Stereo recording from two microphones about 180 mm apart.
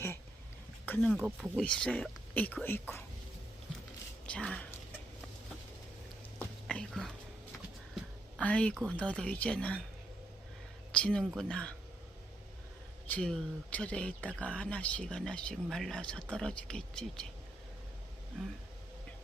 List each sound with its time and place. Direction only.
0.9 s speech: 10° left (ahead or behind)
4.3 s speech: 5° left (ahead or behind)
6.7 s whispering: 5° left (ahead or behind)
8.4 s speech: 5° left (ahead or behind)
10.9 s speech: 5° left (ahead or behind)
13.1 s speech: 5° left (ahead or behind)